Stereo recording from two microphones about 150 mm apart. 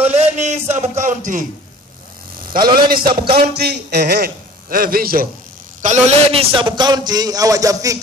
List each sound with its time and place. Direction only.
0.1 s a man's voice: 45° right (ahead or behind)
2.5 s a man's voice: 75° right (ahead or behind)
5.8 s a man's voice: 55° right (ahead or behind)
6.3 s a man's voice: 35° right (ahead or behind)